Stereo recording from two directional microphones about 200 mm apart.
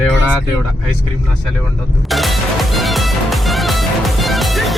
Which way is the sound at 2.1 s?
Centre (ahead or behind).